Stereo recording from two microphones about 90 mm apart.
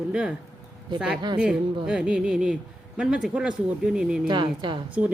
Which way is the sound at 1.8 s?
10° right (ahead or behind).